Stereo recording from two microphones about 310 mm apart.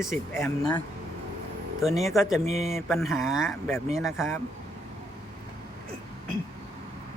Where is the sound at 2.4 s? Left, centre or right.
Right.